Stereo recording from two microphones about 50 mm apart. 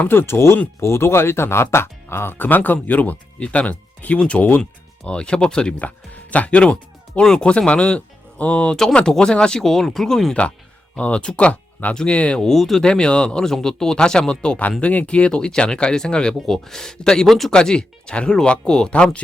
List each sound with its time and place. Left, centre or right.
0.1 s speech: left
5.0 s speech: centre
6.3 s speech: left
8.7 s speech: centre
11.0 s speech: left
12.4 s speech: centre
12.8 s speech: centre
17.5 s speech: centre